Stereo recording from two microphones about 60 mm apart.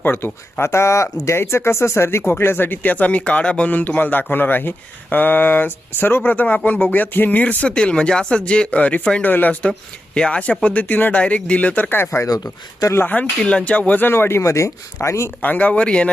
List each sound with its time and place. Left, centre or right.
0.0 s speech: left; by 3.7 s centre
3.7 s speech: left
13.4 s speech: centre
14.1 s speech: left
14.4 s speech: left
15.4 s speech: left